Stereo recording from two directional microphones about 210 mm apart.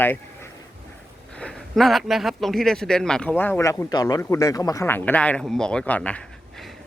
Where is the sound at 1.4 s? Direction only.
5° left (ahead or behind).